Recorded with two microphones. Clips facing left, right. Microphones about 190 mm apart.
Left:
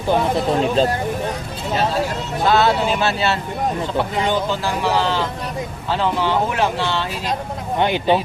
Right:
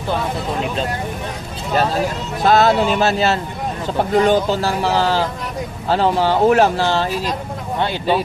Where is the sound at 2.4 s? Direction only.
40° right (ahead or behind).